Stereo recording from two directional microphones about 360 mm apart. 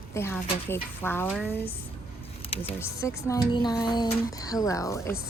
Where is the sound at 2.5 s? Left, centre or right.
Centre.